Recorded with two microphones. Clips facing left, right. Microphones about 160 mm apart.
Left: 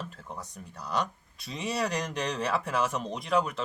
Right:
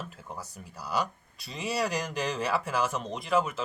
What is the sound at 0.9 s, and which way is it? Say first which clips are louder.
Speech: even; 5° right (ahead or behind).